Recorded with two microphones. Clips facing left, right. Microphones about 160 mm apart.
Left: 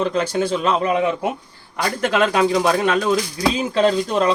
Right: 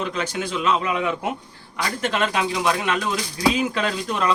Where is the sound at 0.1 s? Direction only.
35° left (ahead or behind).